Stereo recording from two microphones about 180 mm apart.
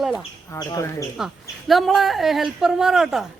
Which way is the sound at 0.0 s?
Centre (ahead or behind).